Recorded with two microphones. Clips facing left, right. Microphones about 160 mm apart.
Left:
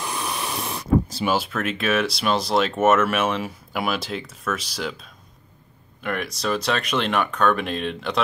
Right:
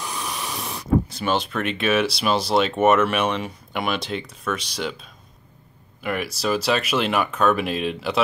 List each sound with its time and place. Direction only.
0.0 s hiss: 55° left (ahead or behind)
1.2 s speech: 5° left (ahead or behind)